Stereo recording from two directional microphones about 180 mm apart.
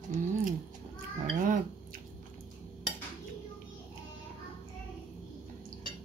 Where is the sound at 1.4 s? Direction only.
50° right (ahead or behind).